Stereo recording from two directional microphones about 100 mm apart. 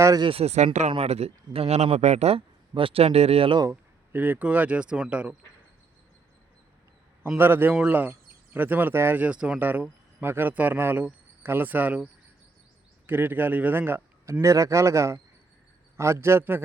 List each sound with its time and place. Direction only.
0.2 s speech: 70° right (ahead or behind)
3.7 s speech: 20° right (ahead or behind)
7.3 s a man's voice: 20° right (ahead or behind)
13.1 s speech: 20° right (ahead or behind)
14.4 s a man's voice: 35° right (ahead or behind)